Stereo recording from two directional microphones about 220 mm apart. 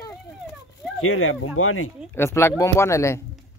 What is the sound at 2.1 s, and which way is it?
Speech, 10° left (ahead or behind).